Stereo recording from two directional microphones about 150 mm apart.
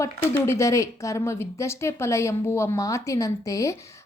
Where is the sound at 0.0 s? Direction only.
20° left (ahead or behind).